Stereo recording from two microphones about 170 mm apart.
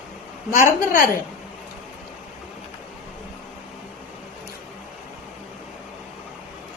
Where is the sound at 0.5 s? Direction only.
50° left (ahead or behind).